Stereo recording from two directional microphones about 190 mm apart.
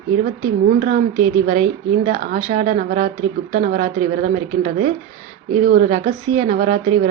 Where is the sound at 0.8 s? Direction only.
40° right (ahead or behind).